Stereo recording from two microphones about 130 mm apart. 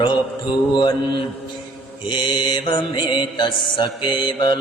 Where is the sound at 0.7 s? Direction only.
35° left (ahead or behind).